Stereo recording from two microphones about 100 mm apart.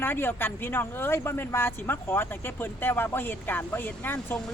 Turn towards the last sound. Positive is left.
turn(degrees=20)  # may be behind; listen again after turning